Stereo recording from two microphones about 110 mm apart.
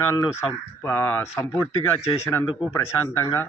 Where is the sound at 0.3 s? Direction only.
25° left (ahead or behind).